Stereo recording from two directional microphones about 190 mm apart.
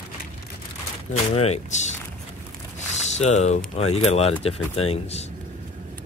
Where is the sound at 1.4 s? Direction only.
35° left (ahead or behind).